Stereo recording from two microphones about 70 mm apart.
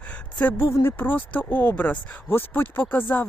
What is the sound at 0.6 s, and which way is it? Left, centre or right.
Speech, left.